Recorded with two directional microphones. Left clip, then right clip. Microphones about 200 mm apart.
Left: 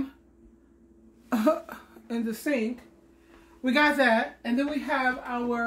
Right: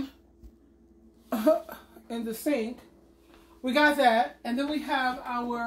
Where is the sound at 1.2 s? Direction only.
20° left (ahead or behind).